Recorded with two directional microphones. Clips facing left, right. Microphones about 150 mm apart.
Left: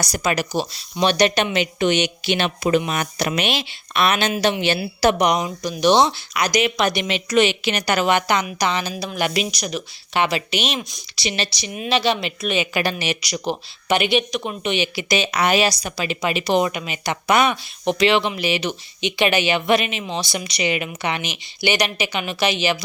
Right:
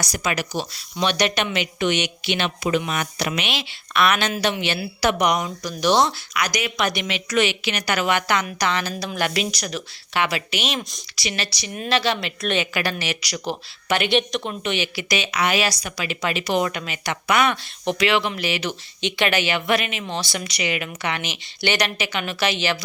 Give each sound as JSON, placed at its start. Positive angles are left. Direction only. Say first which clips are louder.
{"t": 0.0, "sound": "speech", "louder": "left 3 dB", "side_deg": 35}
{"t": 2.3, "sound": "speech", "louder": "left 3 dB", "side_deg": 40}
{"t": 3.9, "sound": "speech", "louder": "left 1 dB", "side_deg": 25}
{"t": 10.8, "sound": "speech", "louder": "left 1 dB", "side_deg": 0}
{"t": 11.1, "sound": "speech", "louder": "left 3 dB", "side_deg": 25}
{"t": 11.7, "sound": "speech", "louder": "left 2 dB", "side_deg": 15}
{"t": 12.4, "sound": "speech", "louder": "left 1 dB", "side_deg": 5}
{"t": 12.7, "sound": "speech", "louder": "left 3 dB", "side_deg": 20}
{"t": 14.1, "sound": "speech", "louder": "left 1 dB", "side_deg": 5}
{"t": 14.6, "sound": "speech", "louder": "left 3 dB", "side_deg": 20}
{"t": 15.2, "sound": "speech", "louder": "left 4 dB", "side_deg": 35}